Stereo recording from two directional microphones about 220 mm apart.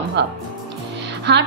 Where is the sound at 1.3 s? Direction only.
50° right (ahead or behind).